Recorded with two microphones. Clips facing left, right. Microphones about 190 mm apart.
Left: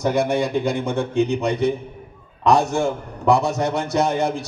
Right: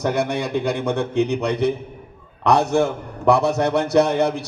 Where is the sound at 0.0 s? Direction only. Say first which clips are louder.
Left 2 dB; 60° right (ahead or behind).